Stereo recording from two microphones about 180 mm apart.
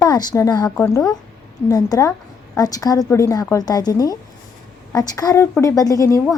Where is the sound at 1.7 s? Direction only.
20° left (ahead or behind).